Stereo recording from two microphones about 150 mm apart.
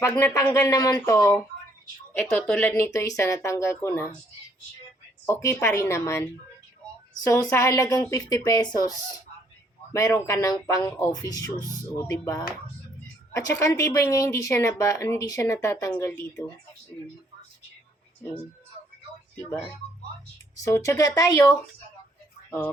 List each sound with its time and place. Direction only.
0.0 s speech: 20° left (ahead or behind)
5.2 s speech: 20° left (ahead or behind)
9.9 s speech: 20° left (ahead or behind)
19.5 s speech: 10° left (ahead or behind)
22.4 s speech: 15° left (ahead or behind)